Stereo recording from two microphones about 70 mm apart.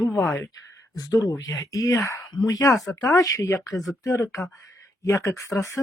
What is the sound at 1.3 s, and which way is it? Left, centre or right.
Speech, left.